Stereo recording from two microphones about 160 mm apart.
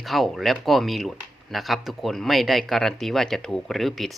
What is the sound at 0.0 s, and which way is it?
Speech, centre (ahead or behind).